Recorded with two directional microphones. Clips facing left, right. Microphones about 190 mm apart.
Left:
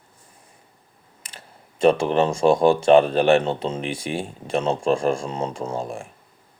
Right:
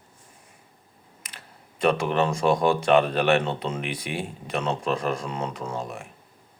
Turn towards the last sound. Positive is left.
turn(degrees=30)  # may be behind; listen again after turning